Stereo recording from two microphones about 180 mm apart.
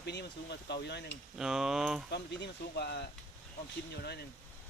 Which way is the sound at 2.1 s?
70° left (ahead or behind).